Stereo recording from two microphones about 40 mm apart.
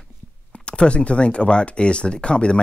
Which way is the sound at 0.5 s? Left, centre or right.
Left.